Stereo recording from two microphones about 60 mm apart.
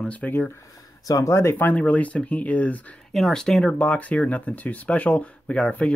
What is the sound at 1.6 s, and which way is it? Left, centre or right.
Speech, left.